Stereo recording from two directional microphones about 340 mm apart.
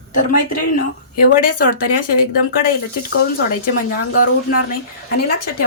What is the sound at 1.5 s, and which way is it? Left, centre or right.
Speech, left.